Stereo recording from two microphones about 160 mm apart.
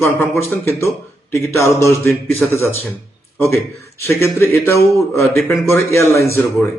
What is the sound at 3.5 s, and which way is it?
A man's voice, 15° left (ahead or behind).